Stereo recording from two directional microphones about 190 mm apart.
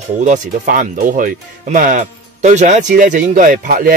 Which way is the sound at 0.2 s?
45° right (ahead or behind).